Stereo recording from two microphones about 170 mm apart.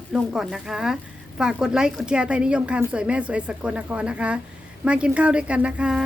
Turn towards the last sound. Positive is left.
turn(degrees=-5)  # may be behind; listen again after turning